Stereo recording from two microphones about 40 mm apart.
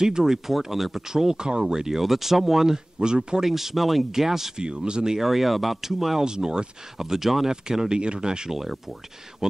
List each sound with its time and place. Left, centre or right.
0.0 s speech: centre
3.4 s speech: centre
4.6 s speech: right
5.2 s speech: centre
6.2 s speech: centre
7.0 s speech: centre
7.9 s speech: right
8.5 s speech: centre